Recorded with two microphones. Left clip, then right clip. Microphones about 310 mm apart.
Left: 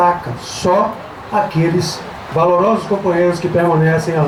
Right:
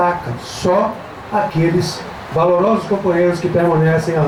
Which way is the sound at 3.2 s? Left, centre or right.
Centre.